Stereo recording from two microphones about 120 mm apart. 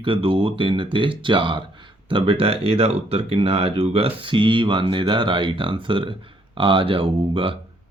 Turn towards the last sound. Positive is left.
turn(degrees=-45)  # may be behind; listen again after turning